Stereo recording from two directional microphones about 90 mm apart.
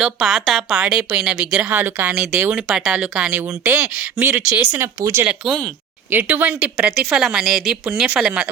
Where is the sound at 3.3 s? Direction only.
20° right (ahead or behind).